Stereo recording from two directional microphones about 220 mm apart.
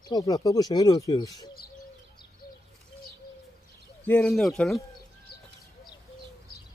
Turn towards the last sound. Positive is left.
turn(degrees=0)  # may be behind; listen again after turning